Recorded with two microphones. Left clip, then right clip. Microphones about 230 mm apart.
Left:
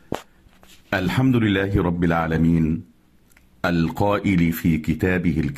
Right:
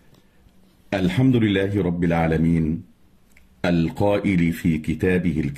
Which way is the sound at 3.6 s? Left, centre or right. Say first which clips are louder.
Even; centre.